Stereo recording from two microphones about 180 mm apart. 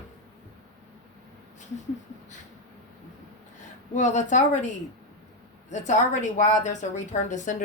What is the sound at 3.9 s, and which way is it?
Speech, 40° left (ahead or behind).